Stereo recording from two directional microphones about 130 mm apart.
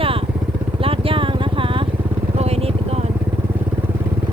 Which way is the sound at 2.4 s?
55° right (ahead or behind).